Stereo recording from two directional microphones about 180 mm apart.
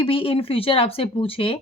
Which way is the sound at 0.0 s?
30° left (ahead or behind).